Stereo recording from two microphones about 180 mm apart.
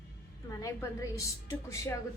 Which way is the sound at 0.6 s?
15° left (ahead or behind).